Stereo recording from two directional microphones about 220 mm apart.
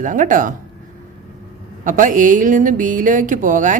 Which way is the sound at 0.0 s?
35° right (ahead or behind).